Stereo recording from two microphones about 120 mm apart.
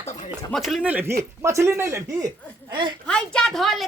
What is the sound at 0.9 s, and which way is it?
Speech, 10° right (ahead or behind).